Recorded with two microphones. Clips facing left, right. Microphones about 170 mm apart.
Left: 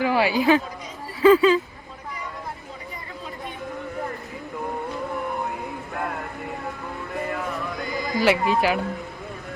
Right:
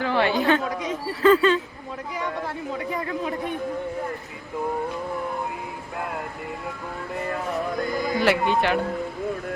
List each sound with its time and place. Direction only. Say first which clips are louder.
0.0 s a woman's voice: left 1 dB; 10° left (ahead or behind)
0.6 s speech: right 9 dB; 90° right
1.2 s speech: left 2 dB; 5° left (ahead or behind)
2.7 s a sound: right 10 dB; 85° right
8.2 s speech: left 2 dB; centre (ahead or behind)